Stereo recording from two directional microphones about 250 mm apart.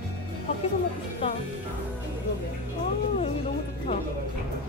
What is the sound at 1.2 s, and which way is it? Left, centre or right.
Speech, left.